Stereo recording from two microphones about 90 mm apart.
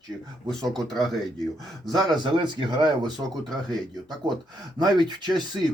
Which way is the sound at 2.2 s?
60° right (ahead or behind).